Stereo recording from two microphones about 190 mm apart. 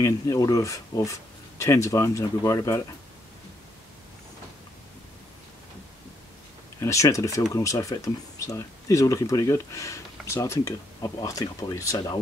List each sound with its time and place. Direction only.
0.0 s speech: 20° left (ahead or behind)
6.8 s speech: 15° left (ahead or behind)